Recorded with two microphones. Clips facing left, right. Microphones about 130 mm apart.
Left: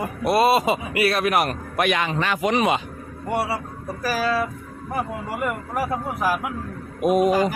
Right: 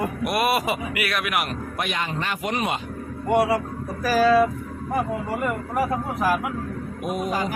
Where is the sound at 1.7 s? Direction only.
75° left (ahead or behind).